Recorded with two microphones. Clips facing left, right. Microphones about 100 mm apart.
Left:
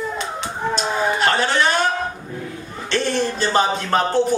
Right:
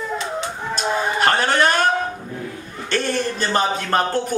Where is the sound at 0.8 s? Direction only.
50° right (ahead or behind).